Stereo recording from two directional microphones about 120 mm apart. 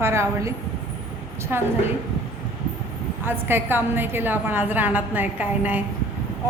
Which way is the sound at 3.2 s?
15° right (ahead or behind).